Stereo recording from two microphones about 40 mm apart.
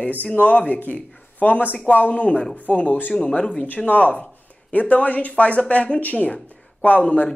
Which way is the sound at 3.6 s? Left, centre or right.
Left.